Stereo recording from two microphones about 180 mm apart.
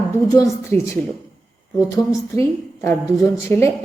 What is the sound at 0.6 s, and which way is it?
A woman's voice, 15° left (ahead or behind).